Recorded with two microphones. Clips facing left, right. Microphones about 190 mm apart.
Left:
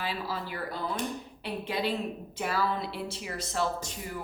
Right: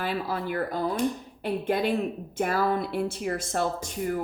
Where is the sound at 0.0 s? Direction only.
55° right (ahead or behind).